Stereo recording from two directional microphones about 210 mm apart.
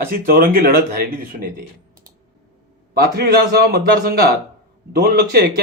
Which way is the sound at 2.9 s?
45° right (ahead or behind).